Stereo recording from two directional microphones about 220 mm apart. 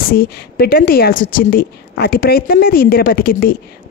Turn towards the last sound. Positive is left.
turn(degrees=40)  # may be behind; listen again after turning